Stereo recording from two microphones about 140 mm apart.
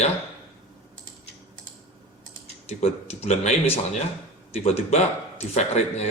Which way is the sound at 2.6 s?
45° left (ahead or behind).